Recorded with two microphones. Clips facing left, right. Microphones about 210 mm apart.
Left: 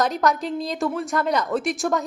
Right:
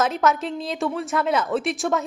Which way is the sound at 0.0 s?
Centre (ahead or behind).